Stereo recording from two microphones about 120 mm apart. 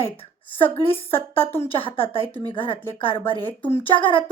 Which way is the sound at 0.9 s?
50° left (ahead or behind).